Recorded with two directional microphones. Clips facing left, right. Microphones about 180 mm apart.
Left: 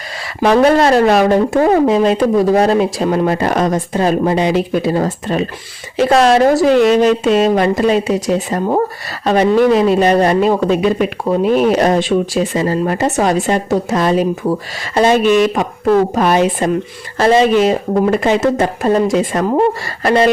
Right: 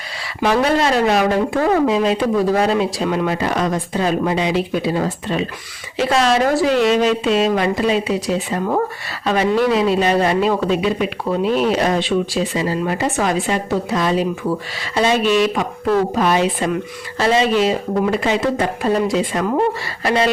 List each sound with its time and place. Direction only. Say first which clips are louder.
0.4 s speech: left 6 dB; 45° left (ahead or behind)